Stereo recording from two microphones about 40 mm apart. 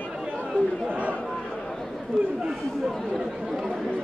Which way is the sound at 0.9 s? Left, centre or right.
Right.